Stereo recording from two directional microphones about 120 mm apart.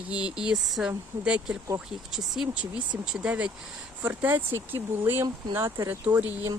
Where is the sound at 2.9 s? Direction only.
10° right (ahead or behind).